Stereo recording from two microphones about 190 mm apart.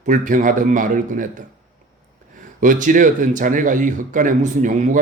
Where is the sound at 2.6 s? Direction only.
45° right (ahead or behind).